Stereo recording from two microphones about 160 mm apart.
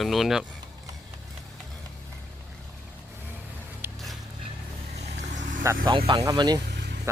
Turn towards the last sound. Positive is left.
turn(degrees=-90)